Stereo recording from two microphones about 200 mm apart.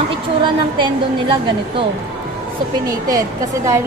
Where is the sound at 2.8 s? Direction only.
15° right (ahead or behind).